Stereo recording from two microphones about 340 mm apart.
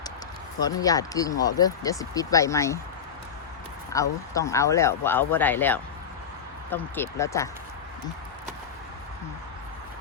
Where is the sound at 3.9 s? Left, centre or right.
Centre.